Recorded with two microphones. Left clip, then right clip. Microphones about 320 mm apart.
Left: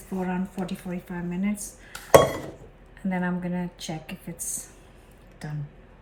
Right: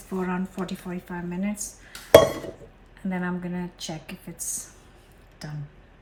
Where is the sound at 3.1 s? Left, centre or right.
Centre.